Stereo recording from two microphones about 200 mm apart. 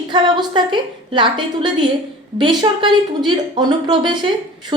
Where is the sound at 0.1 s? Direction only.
25° right (ahead or behind).